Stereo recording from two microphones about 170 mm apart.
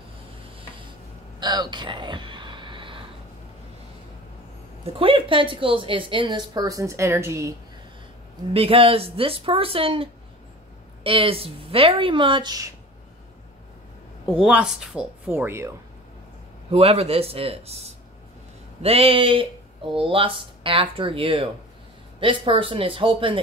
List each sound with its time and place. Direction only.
1.4 s a sound: 25° right (ahead or behind)
4.8 s a woman's voice: 35° right (ahead or behind); by 7.5 s 15° right (ahead or behind)
8.5 s speech: 35° right (ahead or behind)
11.1 s speech: 35° right (ahead or behind)
14.3 s speech: 5° right (ahead or behind)
16.7 s speech: 35° right (ahead or behind)